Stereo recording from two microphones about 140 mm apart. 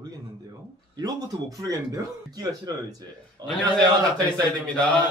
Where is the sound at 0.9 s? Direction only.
30° right (ahead or behind).